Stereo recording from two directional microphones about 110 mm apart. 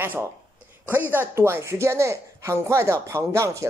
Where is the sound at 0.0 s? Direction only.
20° right (ahead or behind).